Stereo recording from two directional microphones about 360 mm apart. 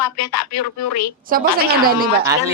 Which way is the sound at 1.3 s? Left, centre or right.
Right.